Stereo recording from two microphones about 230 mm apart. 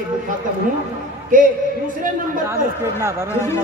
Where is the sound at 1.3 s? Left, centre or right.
Right.